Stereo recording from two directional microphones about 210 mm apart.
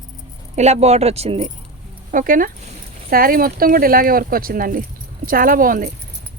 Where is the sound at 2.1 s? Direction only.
40° right (ahead or behind).